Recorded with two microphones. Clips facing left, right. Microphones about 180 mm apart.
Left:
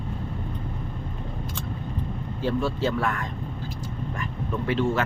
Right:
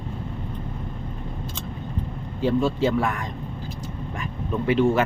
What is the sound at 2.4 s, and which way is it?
Speech, 20° right (ahead or behind).